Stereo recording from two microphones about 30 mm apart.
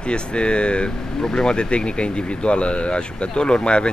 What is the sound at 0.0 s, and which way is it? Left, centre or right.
Speech, left.